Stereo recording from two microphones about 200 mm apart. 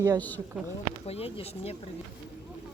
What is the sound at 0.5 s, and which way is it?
Speech, 5° right (ahead or behind).